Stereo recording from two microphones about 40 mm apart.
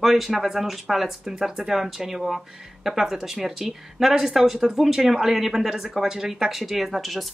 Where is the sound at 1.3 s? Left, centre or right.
Centre.